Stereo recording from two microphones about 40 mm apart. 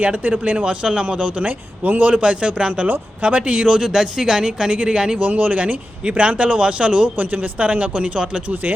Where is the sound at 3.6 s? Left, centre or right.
Centre.